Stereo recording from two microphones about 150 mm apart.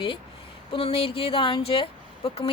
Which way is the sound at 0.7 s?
35° left (ahead or behind).